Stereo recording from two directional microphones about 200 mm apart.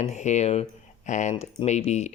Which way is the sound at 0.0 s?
35° left (ahead or behind).